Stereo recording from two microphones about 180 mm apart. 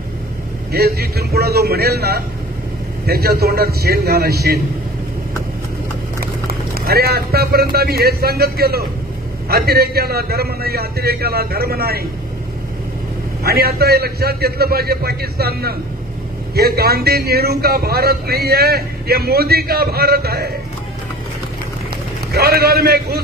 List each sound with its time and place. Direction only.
0.7 s a man's voice: 60° right (ahead or behind)
6.4 s a man's voice: 55° right (ahead or behind)
13.4 s a man's voice: 60° right (ahead or behind)
22.3 s a man's voice: 60° right (ahead or behind)